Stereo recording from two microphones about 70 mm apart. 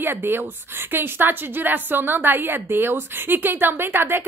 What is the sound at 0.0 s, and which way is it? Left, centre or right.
A woman's voice, right.